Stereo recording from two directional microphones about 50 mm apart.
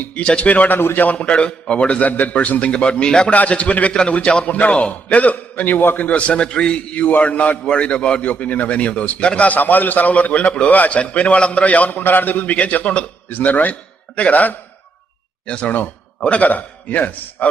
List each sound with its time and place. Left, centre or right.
0.0 s a man's voice: left
6.1 s a man's voice: left
7.0 s a man's voice: left
8.2 s a man's voice: left